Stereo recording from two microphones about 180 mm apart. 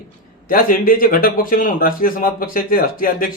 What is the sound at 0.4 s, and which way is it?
Speech, 50° left (ahead or behind).